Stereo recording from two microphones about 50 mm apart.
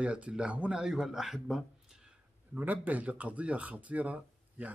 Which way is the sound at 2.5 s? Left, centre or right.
Right.